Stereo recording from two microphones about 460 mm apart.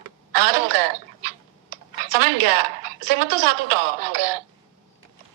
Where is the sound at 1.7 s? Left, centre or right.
Right.